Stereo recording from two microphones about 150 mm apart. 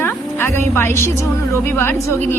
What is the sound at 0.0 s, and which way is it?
Music, 15° left (ahead or behind).